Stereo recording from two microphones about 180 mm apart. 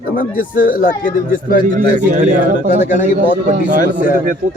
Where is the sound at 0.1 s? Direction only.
50° left (ahead or behind).